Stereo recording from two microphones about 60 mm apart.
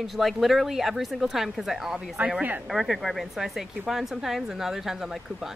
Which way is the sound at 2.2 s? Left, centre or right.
Centre.